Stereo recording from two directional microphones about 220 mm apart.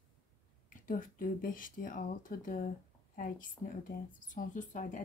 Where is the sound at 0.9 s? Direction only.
40° left (ahead or behind).